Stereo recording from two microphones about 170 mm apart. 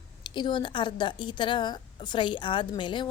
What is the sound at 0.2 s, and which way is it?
A woman's voice, 30° left (ahead or behind).